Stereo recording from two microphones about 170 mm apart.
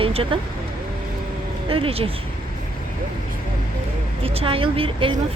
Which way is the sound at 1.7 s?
35° right (ahead or behind).